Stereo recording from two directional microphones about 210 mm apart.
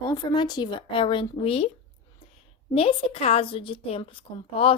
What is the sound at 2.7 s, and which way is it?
A woman's voice, 25° left (ahead or behind).